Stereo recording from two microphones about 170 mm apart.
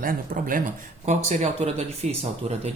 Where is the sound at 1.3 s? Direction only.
40° right (ahead or behind).